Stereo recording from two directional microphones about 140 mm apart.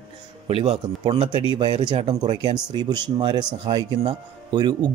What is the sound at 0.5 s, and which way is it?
Speech, 45° right (ahead or behind).